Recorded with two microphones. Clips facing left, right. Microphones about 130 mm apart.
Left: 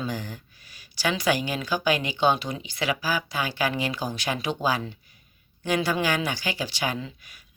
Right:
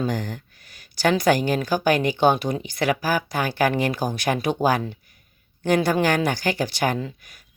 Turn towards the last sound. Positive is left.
turn(degrees=-45)  # may be behind; listen again after turning